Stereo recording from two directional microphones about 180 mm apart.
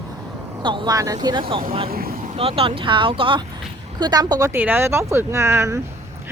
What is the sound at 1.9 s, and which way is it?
Speech, 55° right (ahead or behind).